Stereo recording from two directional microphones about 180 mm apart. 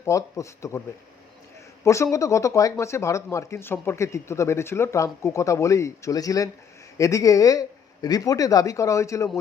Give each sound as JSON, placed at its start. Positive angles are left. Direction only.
{"t": 0.0, "sound": "speech", "side_deg": 15}
{"t": 1.8, "sound": "speech", "side_deg": 15}